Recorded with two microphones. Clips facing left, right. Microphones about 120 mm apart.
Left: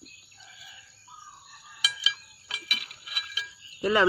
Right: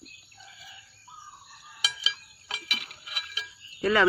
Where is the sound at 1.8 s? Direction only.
30° right (ahead or behind).